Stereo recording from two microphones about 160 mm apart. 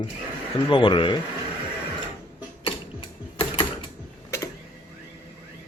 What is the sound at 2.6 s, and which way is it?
Mechanisms, 35° left (ahead or behind).